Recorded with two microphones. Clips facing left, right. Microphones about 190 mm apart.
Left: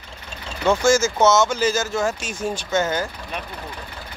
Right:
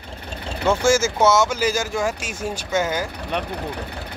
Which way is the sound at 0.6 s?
10° right (ahead or behind).